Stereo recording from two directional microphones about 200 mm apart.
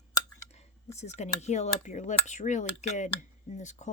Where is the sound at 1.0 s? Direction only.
35° left (ahead or behind).